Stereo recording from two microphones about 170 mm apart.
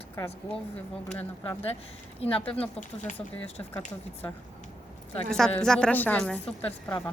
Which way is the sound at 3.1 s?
10° left (ahead or behind).